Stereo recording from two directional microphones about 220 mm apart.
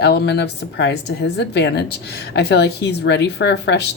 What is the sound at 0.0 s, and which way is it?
Speech, 50° left (ahead or behind).